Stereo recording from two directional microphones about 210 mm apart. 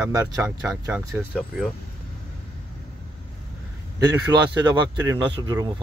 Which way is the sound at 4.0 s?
20° right (ahead or behind).